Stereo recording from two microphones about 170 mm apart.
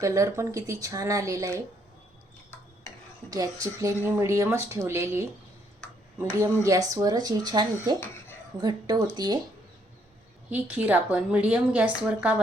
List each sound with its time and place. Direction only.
0.0 s speech: 20° right (ahead or behind)
3.2 s a woman's voice: 20° right (ahead or behind)
10.5 s a woman's voice: 10° right (ahead or behind)